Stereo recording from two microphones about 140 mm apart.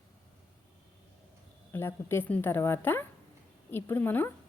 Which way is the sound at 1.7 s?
15° left (ahead or behind).